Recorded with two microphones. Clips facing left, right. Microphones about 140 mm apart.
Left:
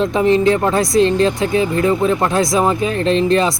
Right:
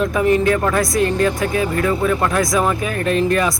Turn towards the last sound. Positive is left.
turn(degrees=25)  # may be behind; listen again after turning